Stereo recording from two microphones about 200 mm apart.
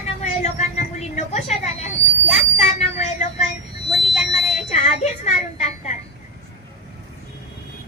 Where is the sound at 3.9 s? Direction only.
Centre (ahead or behind).